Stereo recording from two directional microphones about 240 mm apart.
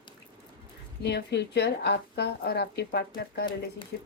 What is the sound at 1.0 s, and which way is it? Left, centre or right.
Speech, left.